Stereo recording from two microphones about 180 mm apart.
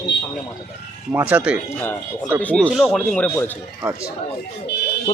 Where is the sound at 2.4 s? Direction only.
5° left (ahead or behind).